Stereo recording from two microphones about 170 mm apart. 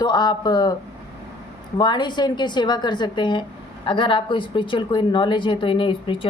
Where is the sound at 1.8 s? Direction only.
25° left (ahead or behind).